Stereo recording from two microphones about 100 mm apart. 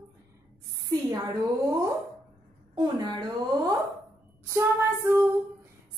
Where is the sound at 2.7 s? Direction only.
40° right (ahead or behind).